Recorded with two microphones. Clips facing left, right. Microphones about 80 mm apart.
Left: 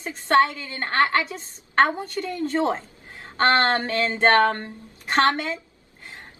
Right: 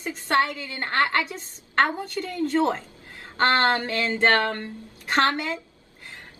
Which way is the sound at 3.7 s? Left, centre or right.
Left.